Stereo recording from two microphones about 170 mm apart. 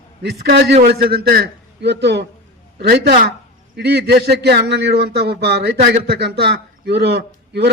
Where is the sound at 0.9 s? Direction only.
65° right (ahead or behind); by 2.2 s 90° right.